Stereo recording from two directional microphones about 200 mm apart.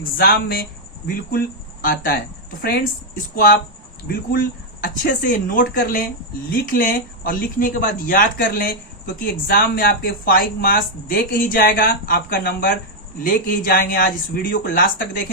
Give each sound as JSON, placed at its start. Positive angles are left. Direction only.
{"t": 0.2, "sound": "speech", "side_deg": 50}